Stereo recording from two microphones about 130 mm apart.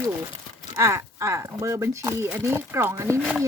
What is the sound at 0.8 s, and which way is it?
Speech, 20° right (ahead or behind).